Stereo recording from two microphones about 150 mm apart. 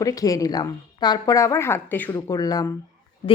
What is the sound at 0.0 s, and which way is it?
Speech, 25° left (ahead or behind).